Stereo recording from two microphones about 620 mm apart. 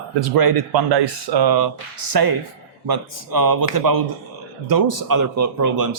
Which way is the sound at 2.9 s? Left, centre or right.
Right.